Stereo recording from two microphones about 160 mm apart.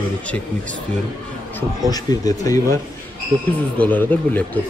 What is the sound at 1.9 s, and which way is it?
Speech, 25° left (ahead or behind).